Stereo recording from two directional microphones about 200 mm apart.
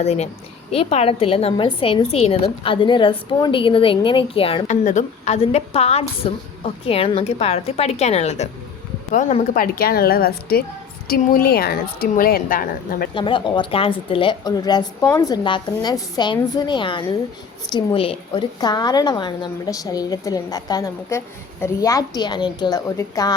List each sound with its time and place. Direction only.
0.0 s a woman's voice: 30° left (ahead or behind)
13.1 s a woman's voice: 25° left (ahead or behind)